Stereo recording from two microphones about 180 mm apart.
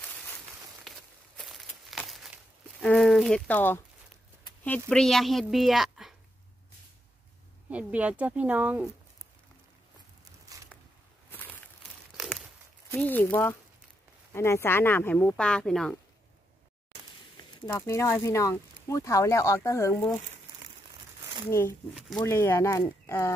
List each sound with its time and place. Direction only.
0.8 s a sound: centre (ahead or behind)
2.8 s a woman's voice: 5° left (ahead or behind)
7.7 s speech: 10° right (ahead or behind)
11.2 s a sound: 10° left (ahead or behind)
12.9 s speech: 10° left (ahead or behind)
17.7 s speech: 15° left (ahead or behind)
21.5 s speech: 15° left (ahead or behind)